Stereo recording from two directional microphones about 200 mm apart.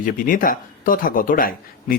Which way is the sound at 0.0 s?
45° left (ahead or behind).